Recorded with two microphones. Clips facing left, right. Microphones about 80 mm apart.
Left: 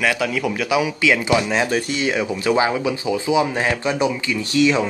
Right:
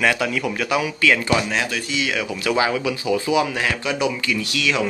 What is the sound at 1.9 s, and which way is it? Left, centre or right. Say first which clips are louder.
Speech: left 3 dB; left.